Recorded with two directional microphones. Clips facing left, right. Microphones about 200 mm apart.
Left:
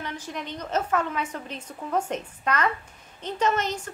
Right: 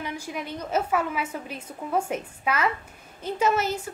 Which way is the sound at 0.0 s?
10° right (ahead or behind).